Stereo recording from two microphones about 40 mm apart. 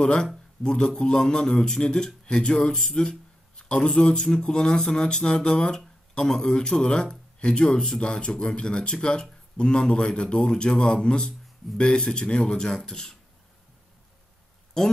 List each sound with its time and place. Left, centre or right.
0.0 s a man's voice: left
14.8 s a man's voice: centre